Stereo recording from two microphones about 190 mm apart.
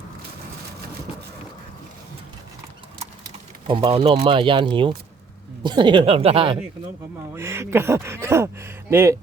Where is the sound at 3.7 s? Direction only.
30° right (ahead or behind).